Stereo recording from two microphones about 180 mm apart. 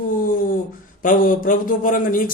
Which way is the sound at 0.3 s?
50° left (ahead or behind).